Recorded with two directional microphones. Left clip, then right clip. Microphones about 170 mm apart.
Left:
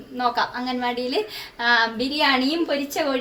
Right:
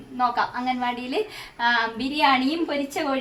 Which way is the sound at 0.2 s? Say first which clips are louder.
Even; centre (ahead or behind).